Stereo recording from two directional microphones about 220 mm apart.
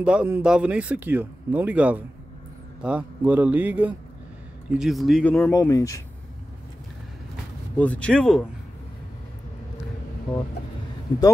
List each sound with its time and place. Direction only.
0.0 s speech: 5° right (ahead or behind); by 6.0 s 15° left (ahead or behind)
7.7 s speech: 5° left (ahead or behind)
11.1 s a man's voice: 20° left (ahead or behind)